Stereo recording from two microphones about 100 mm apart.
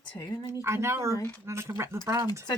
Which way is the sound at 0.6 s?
25° right (ahead or behind).